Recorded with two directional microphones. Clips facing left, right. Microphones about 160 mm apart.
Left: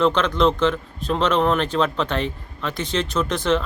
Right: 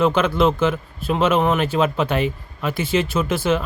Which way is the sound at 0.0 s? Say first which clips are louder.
Right 1 dB; 5° right (ahead or behind).